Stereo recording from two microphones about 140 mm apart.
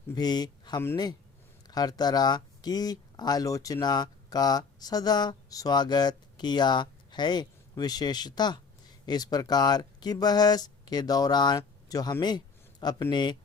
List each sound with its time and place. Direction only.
0.1 s speech: 30° left (ahead or behind)